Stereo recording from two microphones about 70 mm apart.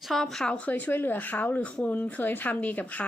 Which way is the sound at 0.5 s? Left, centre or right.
Left.